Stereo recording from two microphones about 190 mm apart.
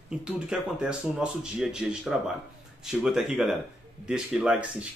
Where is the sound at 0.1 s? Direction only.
5° right (ahead or behind).